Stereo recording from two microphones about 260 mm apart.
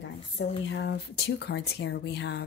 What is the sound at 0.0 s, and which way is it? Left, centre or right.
A woman's voice, left.